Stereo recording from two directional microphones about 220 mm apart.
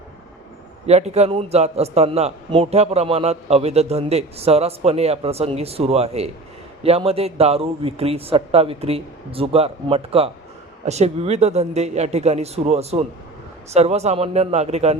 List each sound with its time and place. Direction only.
0.9 s a man's voice: 30° right (ahead or behind)